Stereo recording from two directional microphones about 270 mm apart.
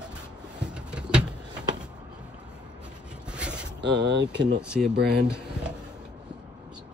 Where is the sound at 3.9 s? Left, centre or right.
Right.